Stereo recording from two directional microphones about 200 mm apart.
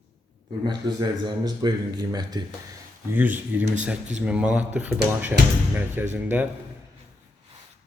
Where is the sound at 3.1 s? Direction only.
10° right (ahead or behind).